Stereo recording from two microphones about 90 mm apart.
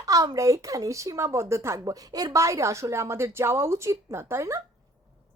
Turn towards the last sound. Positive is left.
turn(degrees=-35)  # may be behind; listen again after turning